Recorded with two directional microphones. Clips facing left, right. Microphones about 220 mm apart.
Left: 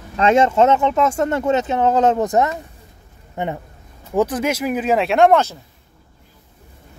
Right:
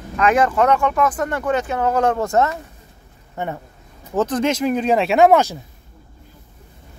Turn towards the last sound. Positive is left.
turn(degrees=-5)  # may be behind; listen again after turning